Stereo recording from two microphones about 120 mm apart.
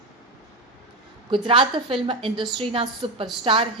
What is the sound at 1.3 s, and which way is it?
A woman's voice, 45° right (ahead or behind).